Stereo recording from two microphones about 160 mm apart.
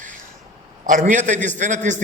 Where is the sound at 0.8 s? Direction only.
55° right (ahead or behind).